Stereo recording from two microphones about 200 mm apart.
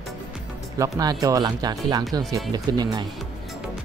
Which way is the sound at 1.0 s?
20° right (ahead or behind).